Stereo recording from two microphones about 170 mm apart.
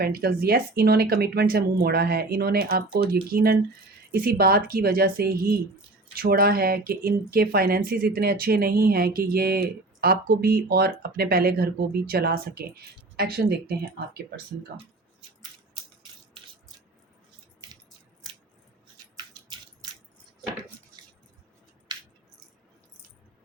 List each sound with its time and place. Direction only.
0.0 s speech: 60° right (ahead or behind)